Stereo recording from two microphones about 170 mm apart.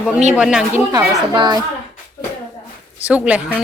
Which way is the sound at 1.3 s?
25° right (ahead or behind).